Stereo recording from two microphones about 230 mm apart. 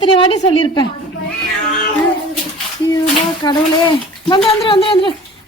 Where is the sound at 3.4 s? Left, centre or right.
Centre.